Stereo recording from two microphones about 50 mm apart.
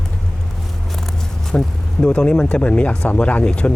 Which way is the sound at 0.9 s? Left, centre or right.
Centre.